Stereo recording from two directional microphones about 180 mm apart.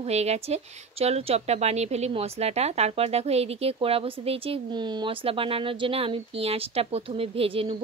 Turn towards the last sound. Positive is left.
turn(degrees=-30)  # may be behind; listen again after turning